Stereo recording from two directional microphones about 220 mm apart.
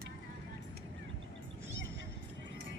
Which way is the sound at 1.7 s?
60° right (ahead or behind).